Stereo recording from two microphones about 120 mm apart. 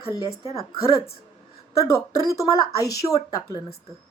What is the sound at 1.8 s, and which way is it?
Speech, 25° left (ahead or behind).